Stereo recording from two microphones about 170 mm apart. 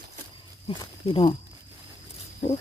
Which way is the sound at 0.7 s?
30° left (ahead or behind).